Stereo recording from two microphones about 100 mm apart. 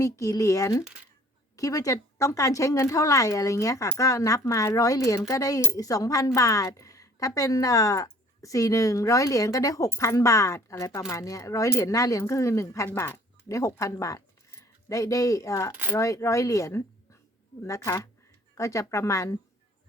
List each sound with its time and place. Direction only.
0.0 s a woman's voice: 35° left (ahead or behind)